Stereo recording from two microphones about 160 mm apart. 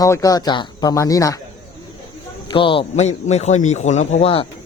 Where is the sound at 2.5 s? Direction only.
30° left (ahead or behind).